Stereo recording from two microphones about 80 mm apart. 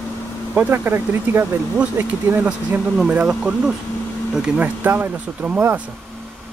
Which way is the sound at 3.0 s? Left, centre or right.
Centre.